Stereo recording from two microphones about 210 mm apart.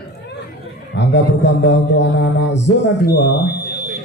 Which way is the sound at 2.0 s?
60° left (ahead or behind).